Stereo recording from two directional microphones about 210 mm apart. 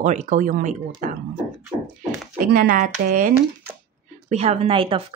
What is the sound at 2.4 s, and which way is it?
Speech, 45° right (ahead or behind).